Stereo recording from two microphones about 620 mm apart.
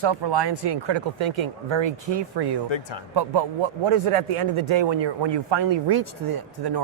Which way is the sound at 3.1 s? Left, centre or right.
Right.